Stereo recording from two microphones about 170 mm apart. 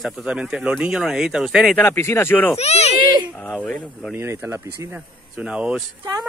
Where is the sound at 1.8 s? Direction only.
15° left (ahead or behind).